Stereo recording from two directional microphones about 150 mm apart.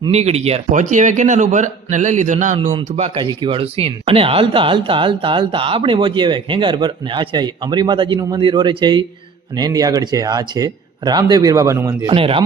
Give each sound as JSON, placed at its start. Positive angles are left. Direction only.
{"t": 0.1, "sound": "a man's voice", "side_deg": -45}
{"t": 3.2, "sound": "speech", "side_deg": -35}
{"t": 12.1, "sound": "speech", "side_deg": -35}